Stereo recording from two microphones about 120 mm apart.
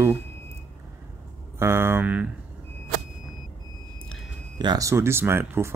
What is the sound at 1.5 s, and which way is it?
Speech, 20° right (ahead or behind).